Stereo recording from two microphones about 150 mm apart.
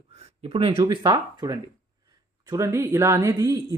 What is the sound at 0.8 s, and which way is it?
Speech, 25° right (ahead or behind).